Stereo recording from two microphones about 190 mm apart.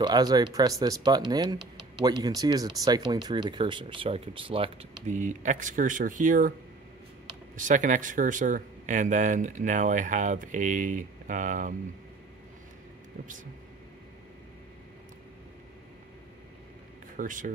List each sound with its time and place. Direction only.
0.0 s speech: 20° right (ahead or behind); by 6.5 s 45° right (ahead or behind)
7.5 s speech: 40° right (ahead or behind)
17.2 s speech: 45° right (ahead or behind)